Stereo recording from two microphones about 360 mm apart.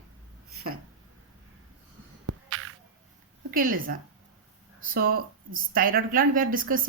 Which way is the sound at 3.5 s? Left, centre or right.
Right.